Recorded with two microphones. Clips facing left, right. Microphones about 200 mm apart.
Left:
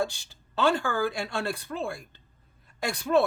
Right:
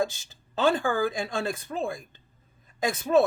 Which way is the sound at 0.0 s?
20° right (ahead or behind).